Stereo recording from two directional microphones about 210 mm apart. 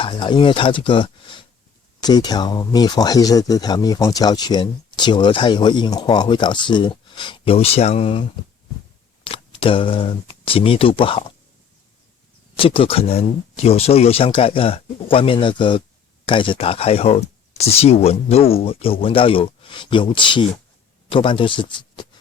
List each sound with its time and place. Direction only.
0.0 s speech: 25° left (ahead or behind)
9.2 s speech: 25° left (ahead or behind)
12.5 s a man's voice: 25° left (ahead or behind)